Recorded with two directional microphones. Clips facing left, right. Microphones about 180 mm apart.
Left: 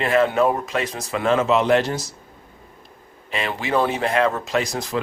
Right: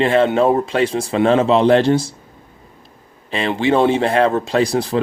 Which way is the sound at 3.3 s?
30° right (ahead or behind).